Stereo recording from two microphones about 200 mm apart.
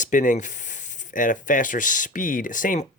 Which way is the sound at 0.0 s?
40° left (ahead or behind).